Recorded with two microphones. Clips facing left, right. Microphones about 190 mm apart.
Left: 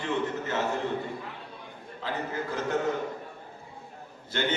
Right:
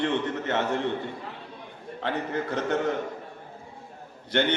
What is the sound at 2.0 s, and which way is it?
Speech, 70° right (ahead or behind).